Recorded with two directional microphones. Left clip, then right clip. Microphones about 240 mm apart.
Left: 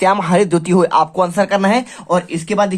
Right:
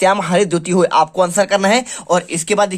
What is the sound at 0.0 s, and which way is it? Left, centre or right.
Speech, centre.